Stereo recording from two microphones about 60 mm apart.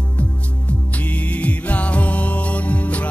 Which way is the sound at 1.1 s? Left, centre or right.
Left.